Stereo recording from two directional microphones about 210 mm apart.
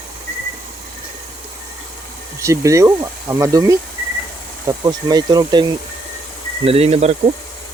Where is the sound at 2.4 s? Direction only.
15° right (ahead or behind).